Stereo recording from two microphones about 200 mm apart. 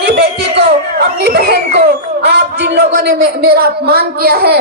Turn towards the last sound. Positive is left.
turn(degrees=-50)  # may be behind; listen again after turning